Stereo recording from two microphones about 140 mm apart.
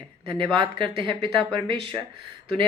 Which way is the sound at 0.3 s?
35° right (ahead or behind).